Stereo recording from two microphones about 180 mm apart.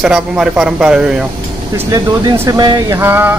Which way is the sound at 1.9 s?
20° right (ahead or behind).